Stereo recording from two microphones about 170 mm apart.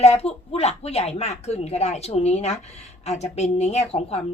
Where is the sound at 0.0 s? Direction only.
40° left (ahead or behind).